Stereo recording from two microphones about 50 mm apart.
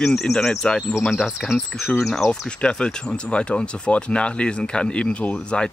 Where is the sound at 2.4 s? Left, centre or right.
Centre.